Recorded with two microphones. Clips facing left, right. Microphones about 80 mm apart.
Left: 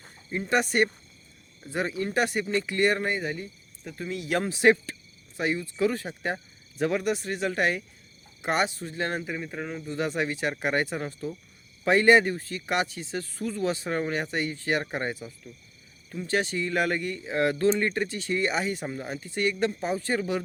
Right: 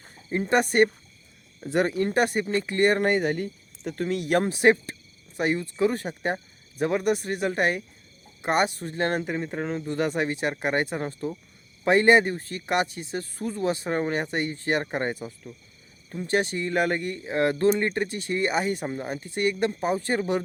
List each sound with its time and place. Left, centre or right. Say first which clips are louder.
0.3 s speech: right 3 dB; right
1.7 s speech: right 6 dB; right
2.0 s speech: right 3 dB; right
3.1 s speech: right 6 dB; right
4.6 s speech: left 1 dB; right
5.4 s speech: right 3 dB; right
5.7 s speech: right 1 dB; right
6.3 s cricket: right 3 dB; right
7.0 s speech: right 3 dB; right
7.4 s speech: right 1 dB; right
9.8 s speech: right 2 dB; right
10.2 s speech: right 2 dB; right
18.9 s speech: right 3 dB; right